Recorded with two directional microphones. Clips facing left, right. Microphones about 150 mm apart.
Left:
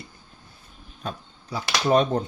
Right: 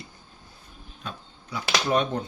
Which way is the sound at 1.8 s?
35° left (ahead or behind).